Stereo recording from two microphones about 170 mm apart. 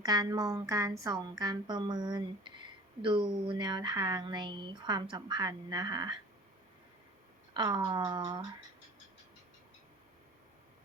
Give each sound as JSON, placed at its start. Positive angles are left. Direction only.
{"t": 0.0, "sound": "speech", "side_deg": -25}
{"t": 7.5, "sound": "speech", "side_deg": -25}